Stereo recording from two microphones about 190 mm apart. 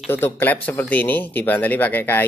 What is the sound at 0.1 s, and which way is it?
Speech, 10° left (ahead or behind).